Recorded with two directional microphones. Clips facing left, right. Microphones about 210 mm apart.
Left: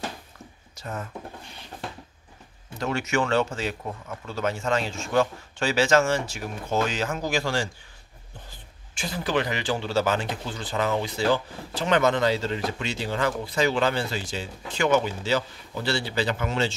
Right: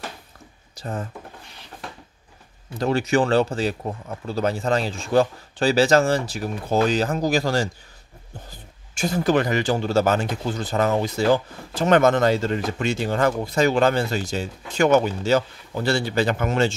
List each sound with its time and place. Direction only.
0.7 s speech: 30° right (ahead or behind)
2.8 s speech: 35° right (ahead or behind)